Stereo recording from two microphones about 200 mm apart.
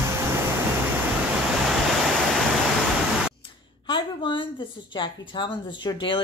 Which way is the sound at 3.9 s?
25° left (ahead or behind).